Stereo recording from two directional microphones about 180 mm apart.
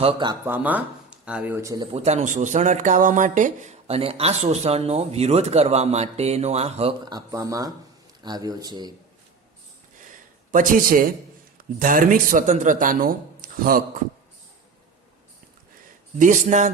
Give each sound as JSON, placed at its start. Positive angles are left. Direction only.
{"t": 0.0, "sound": "speech", "side_deg": -30}
{"t": 0.4, "sound": "speech", "side_deg": -10}
{"t": 1.9, "sound": "speech", "side_deg": -40}
{"t": 7.0, "sound": "speech", "side_deg": -20}
{"t": 10.5, "sound": "speech", "side_deg": -50}
{"t": 16.1, "sound": "speech", "side_deg": -45}